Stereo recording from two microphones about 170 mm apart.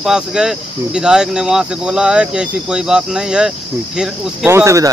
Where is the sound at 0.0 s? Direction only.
5° right (ahead or behind).